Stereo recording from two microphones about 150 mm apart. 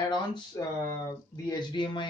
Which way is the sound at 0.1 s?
30° left (ahead or behind).